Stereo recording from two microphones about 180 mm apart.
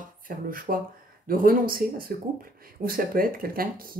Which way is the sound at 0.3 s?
50° right (ahead or behind).